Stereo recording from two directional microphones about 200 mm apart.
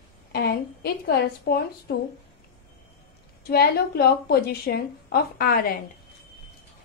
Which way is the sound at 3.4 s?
50° left (ahead or behind).